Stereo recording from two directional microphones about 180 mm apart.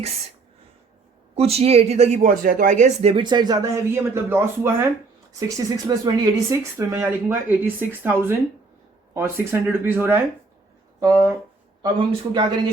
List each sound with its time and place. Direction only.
1.4 s speech: 35° right (ahead or behind)